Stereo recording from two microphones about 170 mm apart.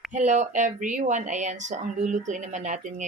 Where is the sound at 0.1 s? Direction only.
45° right (ahead or behind).